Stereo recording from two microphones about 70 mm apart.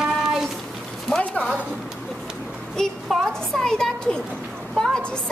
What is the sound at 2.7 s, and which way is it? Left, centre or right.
A woman's voice, centre.